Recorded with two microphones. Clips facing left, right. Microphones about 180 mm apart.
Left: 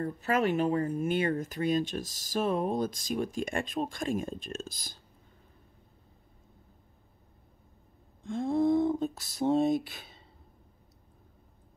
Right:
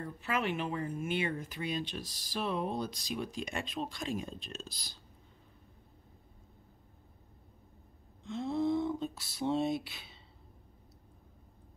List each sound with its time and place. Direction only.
0.0 s speech: 45° left (ahead or behind)
8.2 s speech: 50° left (ahead or behind)